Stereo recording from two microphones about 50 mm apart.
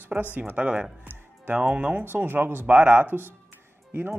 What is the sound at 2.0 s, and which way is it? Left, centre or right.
Speech, right.